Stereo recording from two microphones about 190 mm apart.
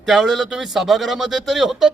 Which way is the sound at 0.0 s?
Centre (ahead or behind).